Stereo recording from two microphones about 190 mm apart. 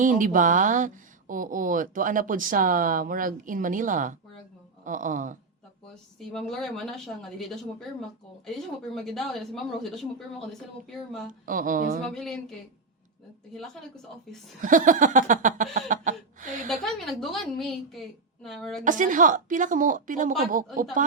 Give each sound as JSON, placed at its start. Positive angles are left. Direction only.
{"t": 0.0, "sound": "speech", "side_deg": -45}
{"t": 5.9, "sound": "speech", "side_deg": 5}
{"t": 11.4, "sound": "speech", "side_deg": -45}
{"t": 12.0, "sound": "speech", "side_deg": 0}
{"t": 14.6, "sound": "a sound", "side_deg": -45}
{"t": 15.9, "sound": "chuckle", "side_deg": -40}
{"t": 16.6, "sound": "a woman's voice", "side_deg": 0}
{"t": 18.8, "sound": "speech", "side_deg": -45}